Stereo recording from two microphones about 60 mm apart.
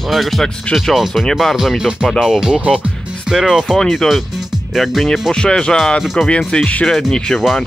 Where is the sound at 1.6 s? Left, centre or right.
Centre.